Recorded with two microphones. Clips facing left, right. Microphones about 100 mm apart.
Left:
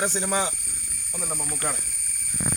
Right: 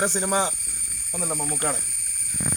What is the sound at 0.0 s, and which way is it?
Speech, 35° right (ahead or behind).